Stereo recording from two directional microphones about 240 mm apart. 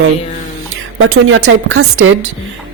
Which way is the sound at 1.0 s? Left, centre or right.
Right.